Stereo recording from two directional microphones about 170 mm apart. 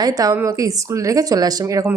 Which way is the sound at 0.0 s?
20° right (ahead or behind).